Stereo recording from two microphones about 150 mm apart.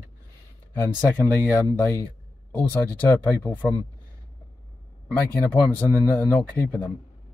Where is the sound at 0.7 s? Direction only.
15° left (ahead or behind).